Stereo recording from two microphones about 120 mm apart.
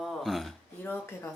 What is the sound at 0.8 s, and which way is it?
Speech, 20° left (ahead or behind).